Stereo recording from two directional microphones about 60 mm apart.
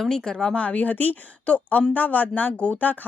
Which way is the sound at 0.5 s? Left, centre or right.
Left.